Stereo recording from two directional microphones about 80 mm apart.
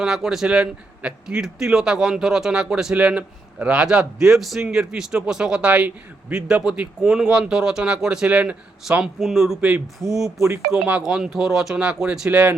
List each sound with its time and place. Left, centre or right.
0.0 s a man's voice: centre
9.6 s a man's voice: centre
10.2 s a man's voice: centre